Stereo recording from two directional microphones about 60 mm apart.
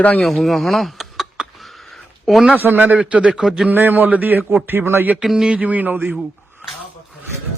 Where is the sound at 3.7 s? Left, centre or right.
Right.